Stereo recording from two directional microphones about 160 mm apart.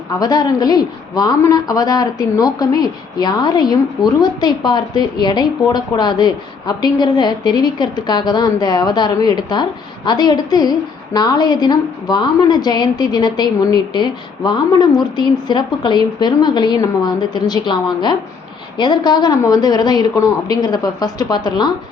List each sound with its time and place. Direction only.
0.2 s a woman's voice: 25° left (ahead or behind)